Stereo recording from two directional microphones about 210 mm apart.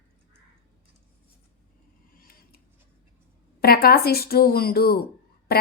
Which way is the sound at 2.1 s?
45° left (ahead or behind).